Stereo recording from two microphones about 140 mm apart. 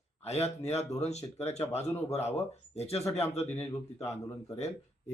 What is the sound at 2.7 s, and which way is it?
Speech, 45° left (ahead or behind).